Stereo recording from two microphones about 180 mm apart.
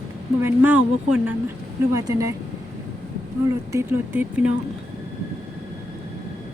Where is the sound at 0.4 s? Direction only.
10° right (ahead or behind).